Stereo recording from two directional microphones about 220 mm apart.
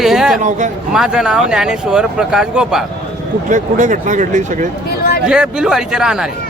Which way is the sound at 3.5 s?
35° right (ahead or behind).